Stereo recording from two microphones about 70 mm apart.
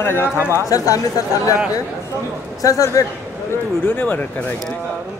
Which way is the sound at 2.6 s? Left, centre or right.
Left.